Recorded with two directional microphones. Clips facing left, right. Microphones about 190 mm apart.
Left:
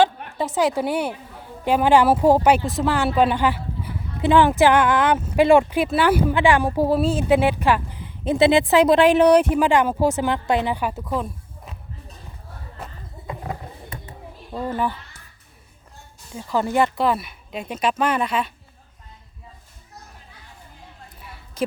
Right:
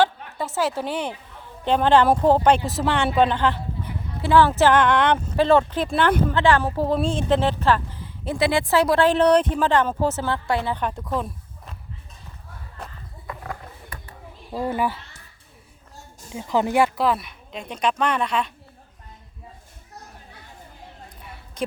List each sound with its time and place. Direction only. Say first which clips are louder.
0.3 s speech: left 4 dB; 15° left (ahead or behind)
13.2 s a sound: left 3 dB; 20° left (ahead or behind)
14.5 s speech: right 1 dB; 10° right (ahead or behind)
16.3 s speech: right 1 dB; 15° right (ahead or behind)
17.0 s speech: left 1 dB; centre (ahead or behind)